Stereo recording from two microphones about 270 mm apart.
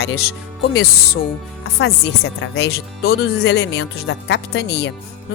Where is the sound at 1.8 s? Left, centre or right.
Left.